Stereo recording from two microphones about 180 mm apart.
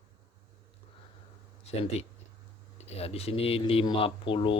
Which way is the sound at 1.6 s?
35° left (ahead or behind).